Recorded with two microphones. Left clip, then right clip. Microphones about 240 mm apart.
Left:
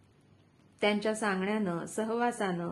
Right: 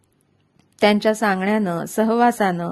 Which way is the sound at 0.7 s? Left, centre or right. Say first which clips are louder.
Right 13 dB; right.